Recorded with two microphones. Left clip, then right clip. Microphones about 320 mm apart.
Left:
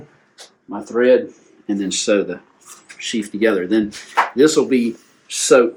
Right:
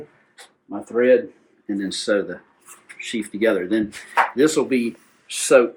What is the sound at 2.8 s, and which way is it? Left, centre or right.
Speech, centre.